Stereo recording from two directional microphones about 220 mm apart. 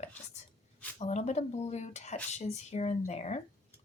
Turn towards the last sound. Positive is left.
turn(degrees=30)  # may be behind; listen again after turning